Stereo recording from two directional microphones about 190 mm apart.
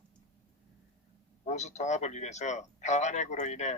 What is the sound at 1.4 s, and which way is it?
A man's voice, 35° left (ahead or behind).